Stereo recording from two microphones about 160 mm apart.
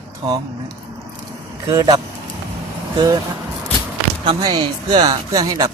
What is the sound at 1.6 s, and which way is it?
Speech, 25° right (ahead or behind).